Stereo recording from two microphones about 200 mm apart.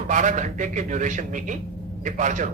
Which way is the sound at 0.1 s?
40° right (ahead or behind).